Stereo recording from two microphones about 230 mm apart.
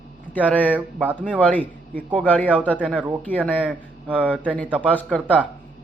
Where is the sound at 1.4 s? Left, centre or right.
Centre.